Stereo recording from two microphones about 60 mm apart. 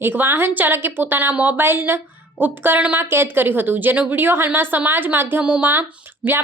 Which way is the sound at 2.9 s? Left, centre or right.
Right.